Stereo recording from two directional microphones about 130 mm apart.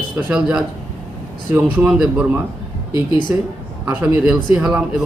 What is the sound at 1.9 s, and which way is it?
Speech, 5° right (ahead or behind).